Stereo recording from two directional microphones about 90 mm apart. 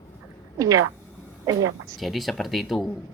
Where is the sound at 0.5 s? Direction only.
40° right (ahead or behind).